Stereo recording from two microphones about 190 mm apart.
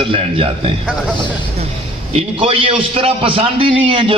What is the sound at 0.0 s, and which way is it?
Speech, 30° right (ahead or behind).